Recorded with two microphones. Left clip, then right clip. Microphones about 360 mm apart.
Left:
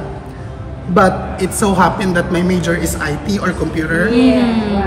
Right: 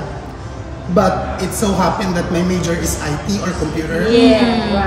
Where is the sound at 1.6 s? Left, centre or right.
Centre.